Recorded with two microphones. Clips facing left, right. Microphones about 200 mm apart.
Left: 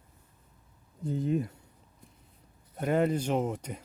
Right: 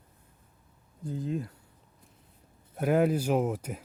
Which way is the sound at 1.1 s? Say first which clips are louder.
Left 4 dB; 20° left (ahead or behind).